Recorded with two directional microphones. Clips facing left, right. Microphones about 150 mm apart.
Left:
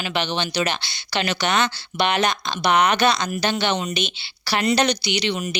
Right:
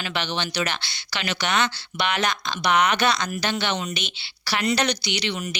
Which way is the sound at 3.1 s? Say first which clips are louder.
Left 3 dB; 20° left (ahead or behind).